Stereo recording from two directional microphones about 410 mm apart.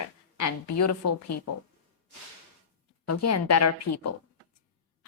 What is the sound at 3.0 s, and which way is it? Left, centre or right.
A woman's voice, left.